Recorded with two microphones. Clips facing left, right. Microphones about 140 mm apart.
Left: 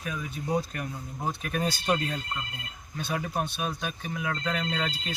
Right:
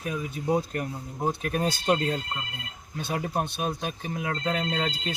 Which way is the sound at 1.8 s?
30° right (ahead or behind).